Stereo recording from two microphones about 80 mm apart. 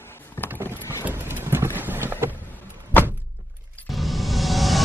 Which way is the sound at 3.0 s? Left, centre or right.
Left.